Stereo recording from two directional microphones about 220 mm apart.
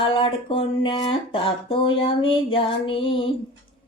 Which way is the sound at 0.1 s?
25° left (ahead or behind).